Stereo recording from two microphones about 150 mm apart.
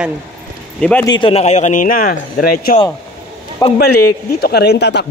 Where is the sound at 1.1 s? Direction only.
40° left (ahead or behind); by 2.7 s 75° left (ahead or behind).